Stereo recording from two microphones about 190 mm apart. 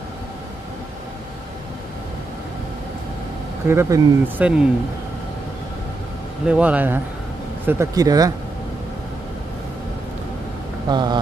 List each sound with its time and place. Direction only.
3.6 s speech: 10° right (ahead or behind)
6.4 s speech: 5° right (ahead or behind)
10.9 s speech: 20° right (ahead or behind)